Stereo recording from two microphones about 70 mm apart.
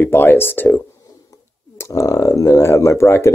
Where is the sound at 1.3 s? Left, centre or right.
Left.